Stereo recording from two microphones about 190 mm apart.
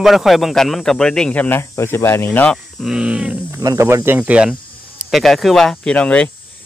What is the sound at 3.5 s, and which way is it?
Speech, 15° right (ahead or behind).